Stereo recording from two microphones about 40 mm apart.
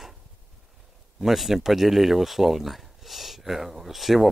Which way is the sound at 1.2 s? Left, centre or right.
Centre.